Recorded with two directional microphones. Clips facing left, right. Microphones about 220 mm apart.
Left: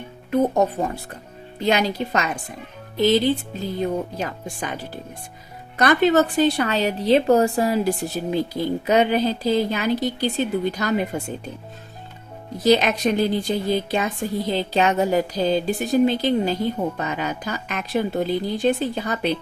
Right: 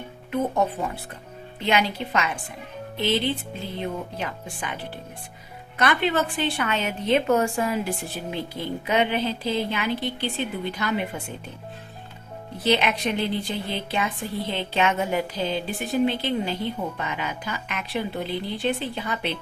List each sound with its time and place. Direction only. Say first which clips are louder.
0.3 s speech: left 5 dB; 40° left (ahead or behind)
12.5 s speech: left 5 dB; 40° left (ahead or behind)